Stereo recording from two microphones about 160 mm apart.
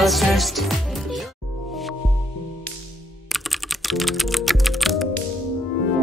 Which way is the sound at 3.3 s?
Centre (ahead or behind).